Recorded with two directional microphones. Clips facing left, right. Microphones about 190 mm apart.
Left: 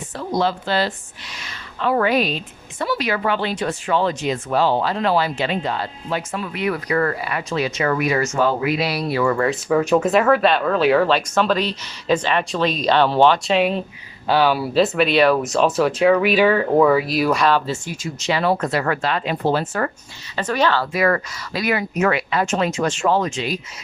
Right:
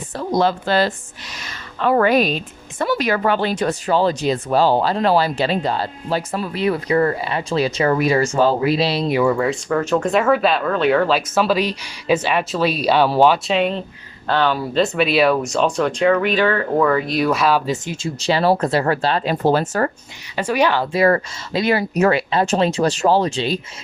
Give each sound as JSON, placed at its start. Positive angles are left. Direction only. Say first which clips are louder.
{"t": 0.2, "sound": "speech", "louder": "right 3 dB", "side_deg": -45}
{"t": 9.2, "sound": "speech", "louder": "right 1 dB", "side_deg": 0}
{"t": 17.7, "sound": "speech", "louder": "right 3 dB", "side_deg": -20}
{"t": 18.2, "sound": "speech", "louder": "right 3 dB", "side_deg": -35}
{"t": 20.3, "sound": "speech", "louder": "right 2 dB", "side_deg": -10}
{"t": 20.9, "sound": "speech", "louder": "right 3 dB", "side_deg": -30}